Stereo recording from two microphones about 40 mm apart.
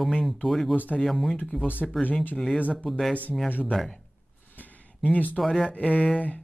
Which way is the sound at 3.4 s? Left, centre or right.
Left.